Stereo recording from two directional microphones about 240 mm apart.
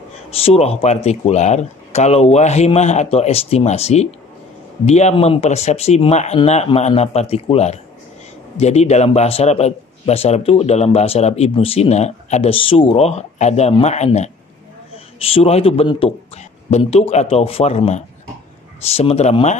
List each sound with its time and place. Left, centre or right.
0.4 s a man's voice: left